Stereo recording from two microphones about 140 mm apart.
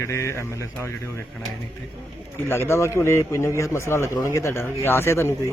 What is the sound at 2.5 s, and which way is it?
A man's voice, 20° left (ahead or behind).